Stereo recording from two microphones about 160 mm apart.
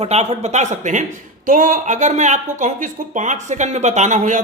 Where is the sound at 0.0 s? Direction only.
40° right (ahead or behind).